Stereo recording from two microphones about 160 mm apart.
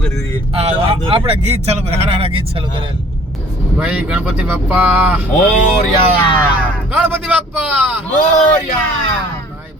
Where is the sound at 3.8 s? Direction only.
5° right (ahead or behind).